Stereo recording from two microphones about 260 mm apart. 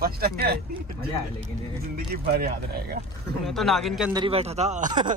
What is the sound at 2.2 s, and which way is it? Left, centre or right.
Speech, right.